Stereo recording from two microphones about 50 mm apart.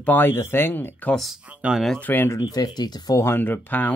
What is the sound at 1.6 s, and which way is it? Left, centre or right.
Speech, right.